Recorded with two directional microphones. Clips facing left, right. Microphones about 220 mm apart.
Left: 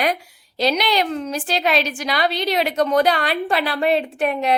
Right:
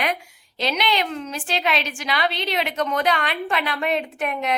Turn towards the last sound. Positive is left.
turn(degrees=30)  # may be behind; listen again after turning